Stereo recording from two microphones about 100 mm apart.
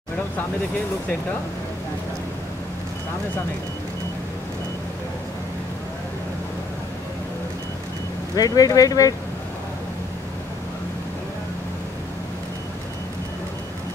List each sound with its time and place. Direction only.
8.4 s speech: 40° left (ahead or behind)